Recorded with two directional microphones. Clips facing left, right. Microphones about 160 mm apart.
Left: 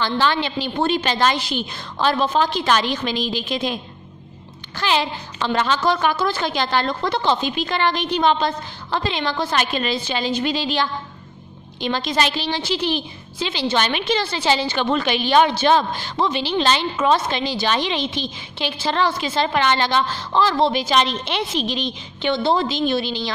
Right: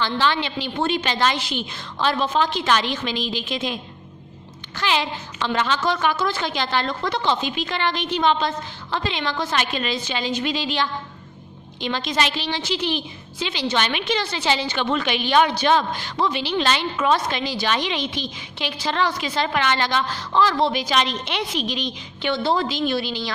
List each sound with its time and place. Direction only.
0.0 s a woman's voice: 45° left (ahead or behind)
4.7 s a woman's voice: 35° left (ahead or behind)